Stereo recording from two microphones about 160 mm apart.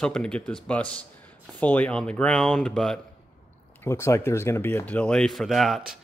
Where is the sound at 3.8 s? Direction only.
15° left (ahead or behind); by 5.8 s centre (ahead or behind).